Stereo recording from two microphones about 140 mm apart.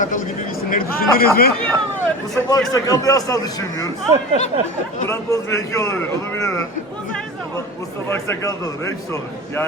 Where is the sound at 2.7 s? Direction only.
25° left (ahead or behind).